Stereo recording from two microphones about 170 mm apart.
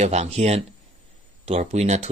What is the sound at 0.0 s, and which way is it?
Speech, 40° right (ahead or behind).